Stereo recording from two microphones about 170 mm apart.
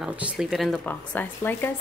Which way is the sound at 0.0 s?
5° right (ahead or behind).